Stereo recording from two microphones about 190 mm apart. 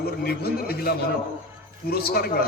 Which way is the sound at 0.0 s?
55° left (ahead or behind).